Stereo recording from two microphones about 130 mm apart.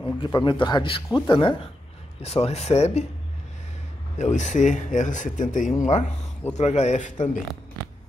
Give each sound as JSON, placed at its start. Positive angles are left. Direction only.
{"t": 0.0, "sound": "speech", "side_deg": 35}
{"t": 2.2, "sound": "speech", "side_deg": 55}
{"t": 4.2, "sound": "speech", "side_deg": 65}